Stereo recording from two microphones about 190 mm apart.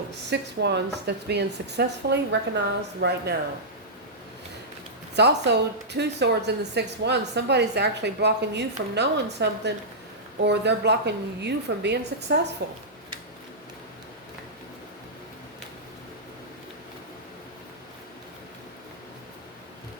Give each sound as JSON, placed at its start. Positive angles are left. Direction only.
{"t": 0.3, "sound": "a woman's voice", "side_deg": -60}
{"t": 5.1, "sound": "a woman's voice", "side_deg": -65}